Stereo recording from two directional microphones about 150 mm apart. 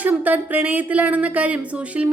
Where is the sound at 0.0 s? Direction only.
10° right (ahead or behind).